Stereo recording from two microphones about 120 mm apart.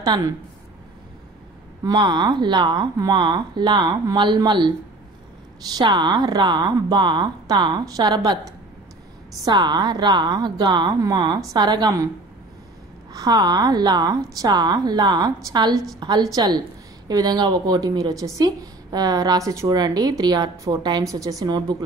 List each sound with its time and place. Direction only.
0.0 s speech: 35° right (ahead or behind)
1.8 s a woman's voice: 35° right (ahead or behind)
5.8 s a woman's voice: 35° right (ahead or behind)
13.1 s a woman's voice: 30° right (ahead or behind)